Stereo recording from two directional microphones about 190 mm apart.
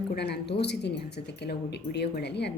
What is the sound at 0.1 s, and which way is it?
Speech, 60° left (ahead or behind).